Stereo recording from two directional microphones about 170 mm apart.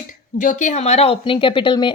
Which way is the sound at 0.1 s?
50° left (ahead or behind).